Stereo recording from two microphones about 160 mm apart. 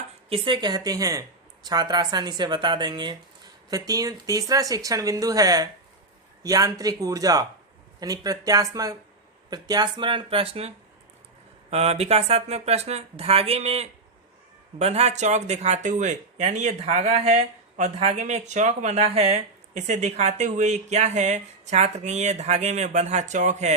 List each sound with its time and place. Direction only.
0.3 s speech: 30° right (ahead or behind); by 23.7 s 45° right (ahead or behind)